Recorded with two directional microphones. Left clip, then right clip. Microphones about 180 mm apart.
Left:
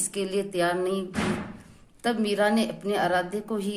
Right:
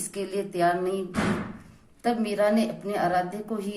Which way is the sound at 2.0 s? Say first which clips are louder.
Even; 35° left (ahead or behind).